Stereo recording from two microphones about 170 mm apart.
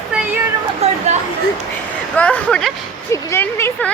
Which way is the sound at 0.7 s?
40° right (ahead or behind).